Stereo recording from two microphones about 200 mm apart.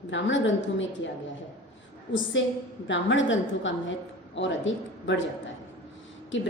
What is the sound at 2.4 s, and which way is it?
A woman's voice, 70° left (ahead or behind).